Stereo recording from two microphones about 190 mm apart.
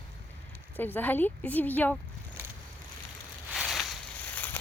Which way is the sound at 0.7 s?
10° left (ahead or behind).